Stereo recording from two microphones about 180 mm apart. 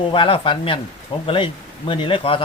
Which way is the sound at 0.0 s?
30° left (ahead or behind).